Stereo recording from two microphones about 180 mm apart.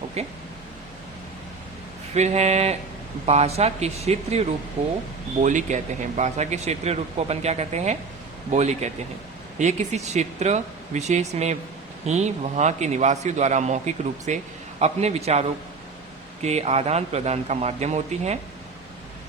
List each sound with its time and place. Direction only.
0.2 s speech: 35° right (ahead or behind)
2.1 s speech: 40° right (ahead or behind)